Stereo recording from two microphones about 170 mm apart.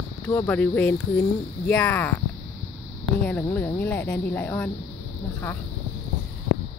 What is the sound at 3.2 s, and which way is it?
Speech, 10° left (ahead or behind).